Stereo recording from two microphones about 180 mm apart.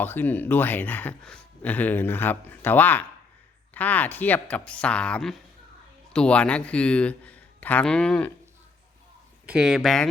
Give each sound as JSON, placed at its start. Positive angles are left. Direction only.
{"t": 0.0, "sound": "speech", "side_deg": 10}
{"t": 9.5, "sound": "speech", "side_deg": 0}